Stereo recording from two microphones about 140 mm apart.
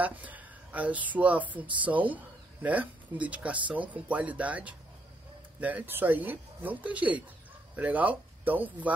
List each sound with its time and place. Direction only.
0.0 s speech: 10° right (ahead or behind)